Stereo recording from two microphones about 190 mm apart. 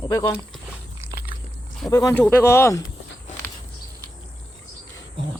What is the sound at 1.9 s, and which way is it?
Speech, 15° left (ahead or behind).